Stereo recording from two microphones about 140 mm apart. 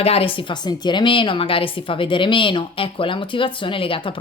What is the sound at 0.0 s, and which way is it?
A woman's voice, 45° left (ahead or behind).